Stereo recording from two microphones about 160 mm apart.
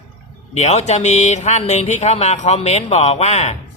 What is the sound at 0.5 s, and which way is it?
A man's voice, 45° left (ahead or behind).